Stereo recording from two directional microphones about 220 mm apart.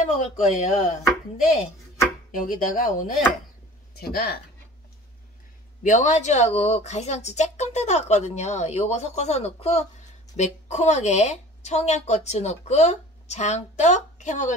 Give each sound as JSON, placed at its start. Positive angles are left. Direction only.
{"t": 0.0, "sound": "a woman's voice", "side_deg": 35}
{"t": 2.3, "sound": "a woman's voice", "side_deg": 40}
{"t": 5.8, "sound": "a woman's voice", "side_deg": 35}